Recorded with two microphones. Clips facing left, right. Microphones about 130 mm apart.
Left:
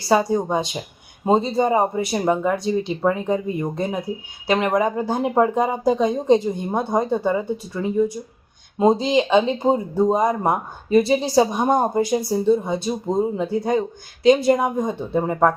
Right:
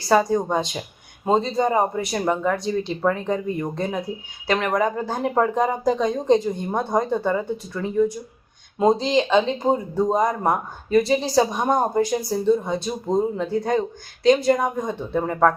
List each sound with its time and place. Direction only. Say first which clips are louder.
0.1 s speech: even; 15° left (ahead or behind)
10.1 s speech: even; 10° left (ahead or behind)